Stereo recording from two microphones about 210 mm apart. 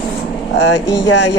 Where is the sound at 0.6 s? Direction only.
60° left (ahead or behind).